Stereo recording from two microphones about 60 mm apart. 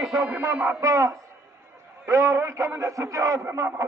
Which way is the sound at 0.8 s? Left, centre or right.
Right.